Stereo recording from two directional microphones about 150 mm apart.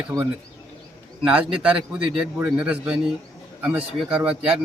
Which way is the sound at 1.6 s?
5° right (ahead or behind).